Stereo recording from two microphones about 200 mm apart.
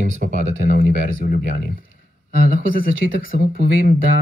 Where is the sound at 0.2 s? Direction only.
40° right (ahead or behind).